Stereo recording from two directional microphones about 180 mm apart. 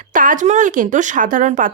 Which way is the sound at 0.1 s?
45° right (ahead or behind).